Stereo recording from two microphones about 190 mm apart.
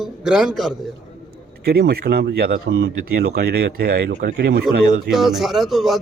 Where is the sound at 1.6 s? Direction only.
55° right (ahead or behind).